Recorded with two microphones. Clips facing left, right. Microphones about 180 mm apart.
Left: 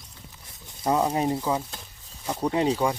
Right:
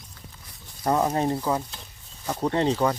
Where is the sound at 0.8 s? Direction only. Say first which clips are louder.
Even; 5° left (ahead or behind).